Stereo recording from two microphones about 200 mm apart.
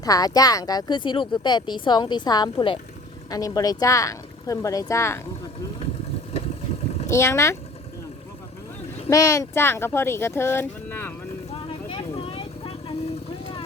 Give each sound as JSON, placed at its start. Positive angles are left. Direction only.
{"t": 0.0, "sound": "speech", "side_deg": 20}
{"t": 7.1, "sound": "speech", "side_deg": 15}
{"t": 9.0, "sound": "speech", "side_deg": 15}
{"t": 11.9, "sound": "vehicle", "side_deg": 25}